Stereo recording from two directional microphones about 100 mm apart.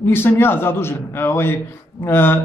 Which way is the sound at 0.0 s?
20° left (ahead or behind).